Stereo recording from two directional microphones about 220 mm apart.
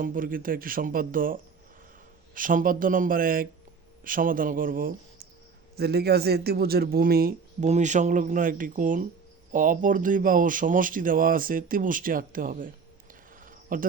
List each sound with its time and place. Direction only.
0.0 s speech: 40° right (ahead or behind)
13.4 s cricket: 40° right (ahead or behind)